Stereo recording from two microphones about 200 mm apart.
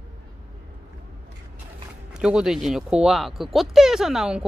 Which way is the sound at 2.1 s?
5° right (ahead or behind).